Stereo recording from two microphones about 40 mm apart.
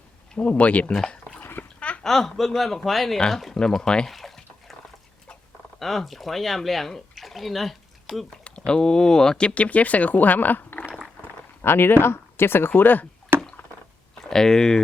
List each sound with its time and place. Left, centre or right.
0.3 s speech: left
1.4 s a sound: left
1.8 s a sound: left
2.0 s speech: centre
4.1 s speech: centre
5.8 s speech: centre
8.4 s speech: left
9.6 s speech: left
11.6 s speech: left
12.7 s speech: left
13.3 s a sound: right
14.2 s speech: centre